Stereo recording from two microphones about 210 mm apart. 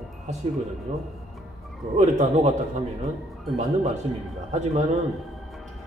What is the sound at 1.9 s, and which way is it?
Speech, 35° right (ahead or behind).